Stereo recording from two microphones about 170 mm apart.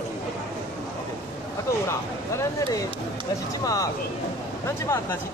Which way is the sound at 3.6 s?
20° left (ahead or behind).